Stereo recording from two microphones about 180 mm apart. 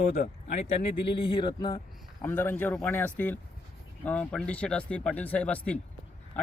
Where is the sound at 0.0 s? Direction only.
40° left (ahead or behind); by 1.8 s 25° left (ahead or behind).